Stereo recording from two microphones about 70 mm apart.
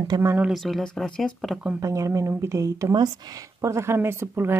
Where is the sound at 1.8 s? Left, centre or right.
Right.